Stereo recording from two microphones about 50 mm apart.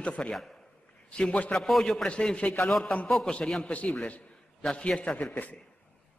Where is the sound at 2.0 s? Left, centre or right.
Left.